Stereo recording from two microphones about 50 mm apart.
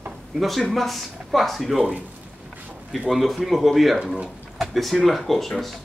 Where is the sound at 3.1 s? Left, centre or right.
Centre.